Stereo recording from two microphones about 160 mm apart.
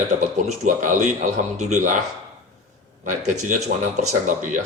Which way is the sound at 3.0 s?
50° right (ahead or behind).